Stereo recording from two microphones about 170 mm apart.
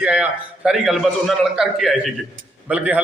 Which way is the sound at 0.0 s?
5° right (ahead or behind).